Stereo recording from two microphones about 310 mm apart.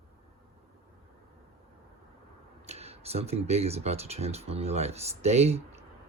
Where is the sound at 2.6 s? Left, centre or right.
Centre.